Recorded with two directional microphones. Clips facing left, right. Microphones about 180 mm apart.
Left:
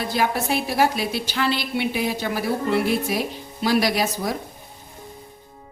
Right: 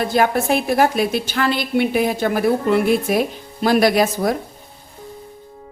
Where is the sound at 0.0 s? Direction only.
50° right (ahead or behind).